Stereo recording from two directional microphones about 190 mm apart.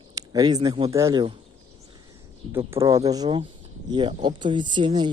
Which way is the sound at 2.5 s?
15° right (ahead or behind).